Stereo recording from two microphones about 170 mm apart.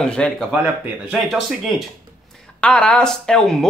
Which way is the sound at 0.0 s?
5° left (ahead or behind).